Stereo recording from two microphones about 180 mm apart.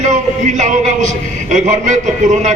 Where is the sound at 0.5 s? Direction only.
40° right (ahead or behind).